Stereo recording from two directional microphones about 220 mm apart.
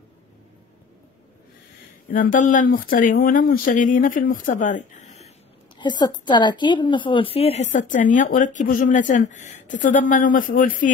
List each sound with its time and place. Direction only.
2.3 s a woman's voice: 35° left (ahead or behind)
4.6 s a sound: 35° left (ahead or behind)
5.8 s a woman's voice: 20° left (ahead or behind); by 10.9 s 40° left (ahead or behind)